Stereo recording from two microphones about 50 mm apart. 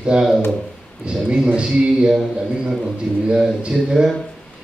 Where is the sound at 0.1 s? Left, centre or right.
Centre.